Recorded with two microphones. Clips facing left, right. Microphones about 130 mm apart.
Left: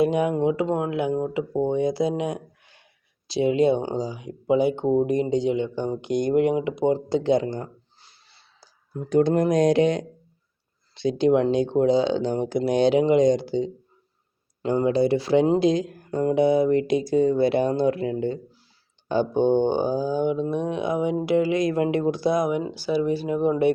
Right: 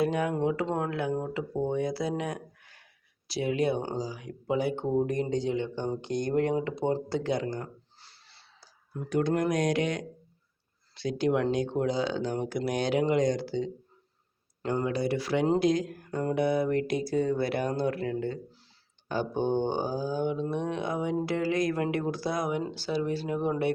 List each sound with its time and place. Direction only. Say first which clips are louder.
0.0 s speech: left 6 dB; 20° left (ahead or behind)